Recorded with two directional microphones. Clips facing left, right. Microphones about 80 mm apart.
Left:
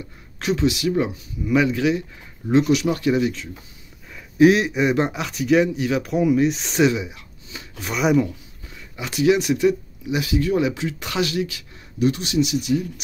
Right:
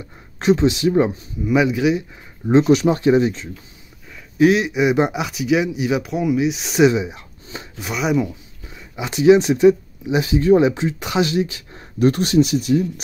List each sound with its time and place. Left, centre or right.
0.4 s speech: right
1.4 s speech: centre
2.6 s speech: right
4.1 s speech: centre
4.9 s speech: centre
6.0 s speech: centre
6.9 s speech: right
7.5 s chopping: right
7.8 s speech: centre
8.6 s speech: right
11.7 s speech: right